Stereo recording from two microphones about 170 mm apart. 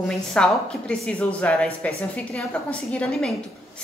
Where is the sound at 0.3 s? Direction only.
5° left (ahead or behind).